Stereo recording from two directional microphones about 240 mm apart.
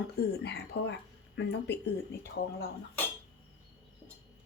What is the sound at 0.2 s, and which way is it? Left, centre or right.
A woman's voice, left.